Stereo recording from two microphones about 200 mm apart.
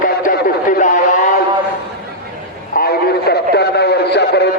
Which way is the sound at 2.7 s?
50° left (ahead or behind).